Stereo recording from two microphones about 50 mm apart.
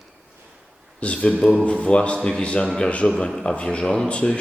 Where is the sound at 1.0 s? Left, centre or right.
Left.